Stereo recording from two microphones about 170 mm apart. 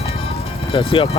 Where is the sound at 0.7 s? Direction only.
30° left (ahead or behind).